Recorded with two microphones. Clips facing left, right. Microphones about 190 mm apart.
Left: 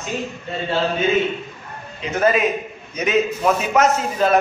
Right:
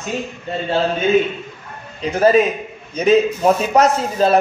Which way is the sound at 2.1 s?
35° right (ahead or behind).